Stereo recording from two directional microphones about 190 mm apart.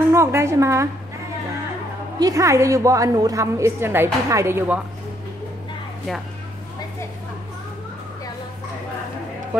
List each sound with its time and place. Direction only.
0.1 s a woman's voice: 15° right (ahead or behind)
2.1 s a woman's voice: 20° right (ahead or behind)